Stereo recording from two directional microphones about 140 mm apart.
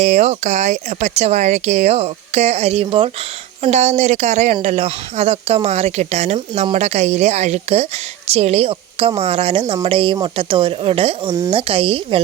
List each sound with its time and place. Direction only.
0.0 s speech: 55° right (ahead or behind)
3.6 s speech: 55° right (ahead or behind)